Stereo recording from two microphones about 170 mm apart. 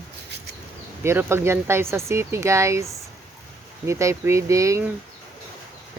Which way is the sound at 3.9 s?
15° right (ahead or behind).